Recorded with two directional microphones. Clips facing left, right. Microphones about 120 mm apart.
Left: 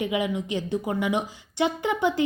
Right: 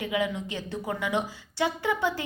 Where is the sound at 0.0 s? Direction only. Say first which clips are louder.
Left 3 dB; 20° left (ahead or behind).